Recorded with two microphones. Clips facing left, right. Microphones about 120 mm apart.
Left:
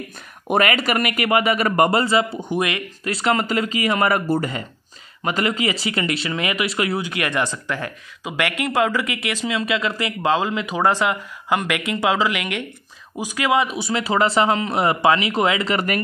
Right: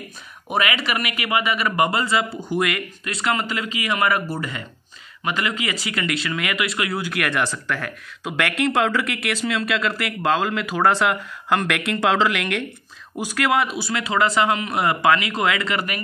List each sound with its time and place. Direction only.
0.5 s a man's voice: 45° left (ahead or behind); by 2.8 s 20° left (ahead or behind)
3.0 s a man's voice: 35° left (ahead or behind)